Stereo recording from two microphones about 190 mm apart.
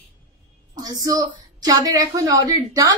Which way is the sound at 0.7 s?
20° right (ahead or behind).